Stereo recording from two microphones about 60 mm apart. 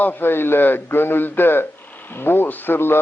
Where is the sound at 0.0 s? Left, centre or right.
Left.